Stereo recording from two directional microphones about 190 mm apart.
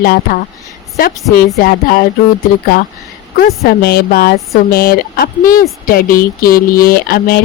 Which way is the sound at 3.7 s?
55° left (ahead or behind).